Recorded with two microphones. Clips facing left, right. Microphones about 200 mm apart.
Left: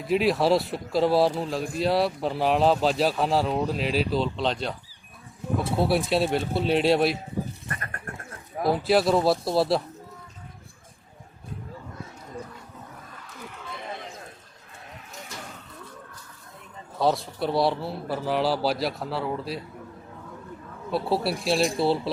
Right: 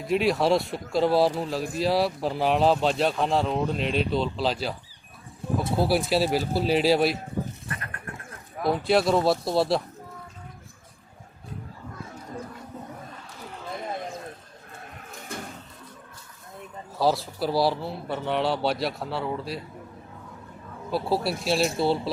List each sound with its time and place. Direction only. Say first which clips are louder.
0.0 s speech: left 1 dB; centre (ahead or behind)
8.6 s speech: left 1 dB; centre (ahead or behind)
13.5 s a sound: right 5 dB; 45° right (ahead or behind)
15.3 s toilet flush: right 6 dB; 55° right (ahead or behind)
17.0 s speech: even; centre (ahead or behind)
20.9 s speech: even; centre (ahead or behind)